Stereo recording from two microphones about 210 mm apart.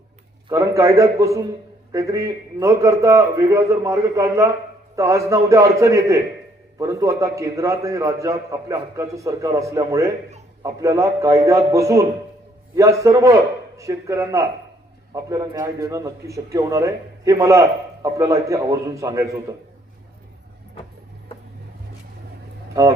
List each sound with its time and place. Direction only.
0.4 s a man's voice: 15° right (ahead or behind)
22.7 s speech: 15° right (ahead or behind)